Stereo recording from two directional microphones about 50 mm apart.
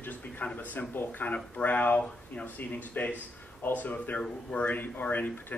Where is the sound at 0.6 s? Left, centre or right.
Left.